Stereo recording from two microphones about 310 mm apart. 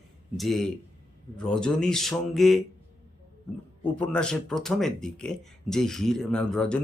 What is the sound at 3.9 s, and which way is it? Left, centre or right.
Speech, centre.